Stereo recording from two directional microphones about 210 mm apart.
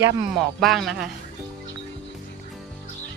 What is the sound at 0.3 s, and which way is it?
Speech, centre (ahead or behind).